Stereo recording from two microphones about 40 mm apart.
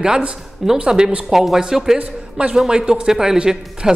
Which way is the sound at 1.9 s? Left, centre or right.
Right.